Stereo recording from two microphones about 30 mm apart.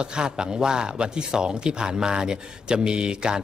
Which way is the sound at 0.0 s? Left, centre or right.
Right.